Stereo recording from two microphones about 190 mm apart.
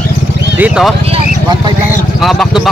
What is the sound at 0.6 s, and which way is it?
Speech, 5° right (ahead or behind).